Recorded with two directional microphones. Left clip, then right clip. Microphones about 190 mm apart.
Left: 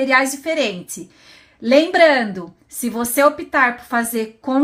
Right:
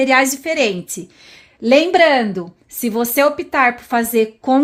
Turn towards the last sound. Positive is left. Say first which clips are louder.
# right 6 dB
turn(degrees=-40)  # may be behind; listen again after turning